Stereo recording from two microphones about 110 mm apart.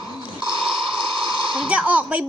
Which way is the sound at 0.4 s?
50° right (ahead or behind).